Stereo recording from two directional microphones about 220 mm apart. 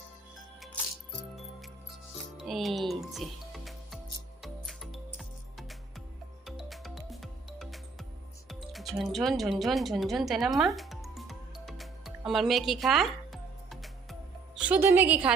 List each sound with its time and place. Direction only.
2.5 s music: centre (ahead or behind)